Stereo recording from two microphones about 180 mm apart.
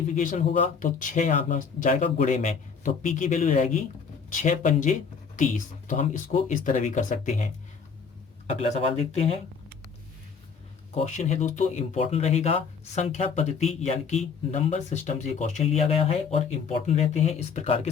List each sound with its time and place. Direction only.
0.1 s speech: 45° left (ahead or behind)
8.4 s speech: 35° left (ahead or behind)
10.9 s speech: 40° left (ahead or behind)